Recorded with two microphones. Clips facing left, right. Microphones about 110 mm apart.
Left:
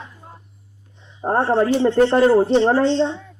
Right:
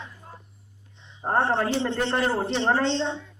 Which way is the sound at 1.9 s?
45° left (ahead or behind).